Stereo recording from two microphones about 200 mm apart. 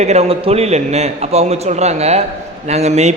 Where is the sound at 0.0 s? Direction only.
30° right (ahead or behind).